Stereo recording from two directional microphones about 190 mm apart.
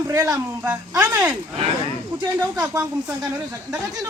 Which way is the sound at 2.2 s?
15° right (ahead or behind).